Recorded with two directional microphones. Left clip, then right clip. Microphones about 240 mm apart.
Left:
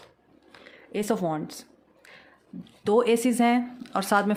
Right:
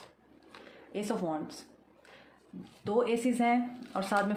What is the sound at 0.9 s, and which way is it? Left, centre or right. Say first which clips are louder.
Speech: left 7 dB; left.